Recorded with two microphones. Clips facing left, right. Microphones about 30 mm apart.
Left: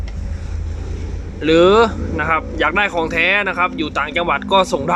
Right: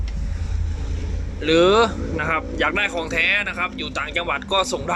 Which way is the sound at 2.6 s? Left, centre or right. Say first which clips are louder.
Left 5 dB; centre.